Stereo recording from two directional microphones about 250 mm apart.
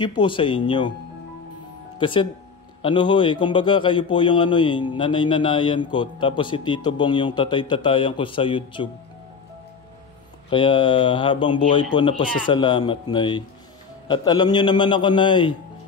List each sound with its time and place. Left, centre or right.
0.0 s a man's voice: centre
2.0 s a man's voice: centre
10.5 s a man's voice: centre